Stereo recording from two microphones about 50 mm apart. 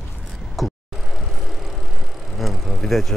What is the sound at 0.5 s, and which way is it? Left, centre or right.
Vehicle, centre.